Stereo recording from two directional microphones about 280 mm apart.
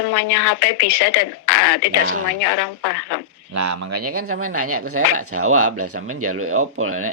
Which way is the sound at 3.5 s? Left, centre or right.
Right.